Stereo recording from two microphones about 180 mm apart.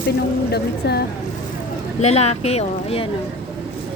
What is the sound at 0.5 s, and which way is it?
Speech, 65° left (ahead or behind).